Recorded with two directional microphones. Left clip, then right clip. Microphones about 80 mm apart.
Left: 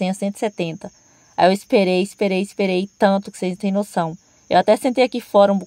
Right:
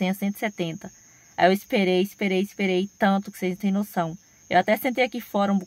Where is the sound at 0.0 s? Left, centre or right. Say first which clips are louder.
Left 5 dB; left.